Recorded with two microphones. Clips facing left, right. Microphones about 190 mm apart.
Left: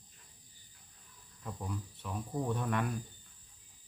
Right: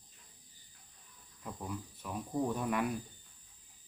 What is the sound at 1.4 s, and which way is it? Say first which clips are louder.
Speech: even; centre (ahead or behind).